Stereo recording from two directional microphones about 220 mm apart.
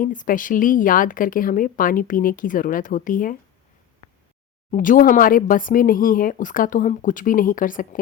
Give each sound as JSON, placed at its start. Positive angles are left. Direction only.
{"t": 0.0, "sound": "speech", "side_deg": 35}
{"t": 4.7, "sound": "speech", "side_deg": 35}